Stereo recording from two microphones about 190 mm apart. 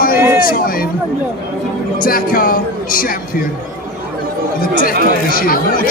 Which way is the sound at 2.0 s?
50° left (ahead or behind).